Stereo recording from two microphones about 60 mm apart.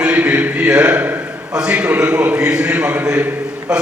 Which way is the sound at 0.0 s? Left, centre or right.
Right.